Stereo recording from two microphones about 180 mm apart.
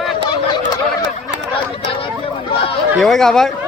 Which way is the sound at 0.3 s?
25° left (ahead or behind).